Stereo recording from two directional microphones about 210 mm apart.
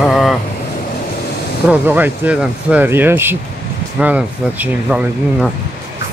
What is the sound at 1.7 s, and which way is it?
Speech, 10° right (ahead or behind).